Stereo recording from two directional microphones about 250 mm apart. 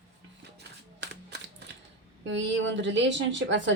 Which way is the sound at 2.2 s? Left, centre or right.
Right.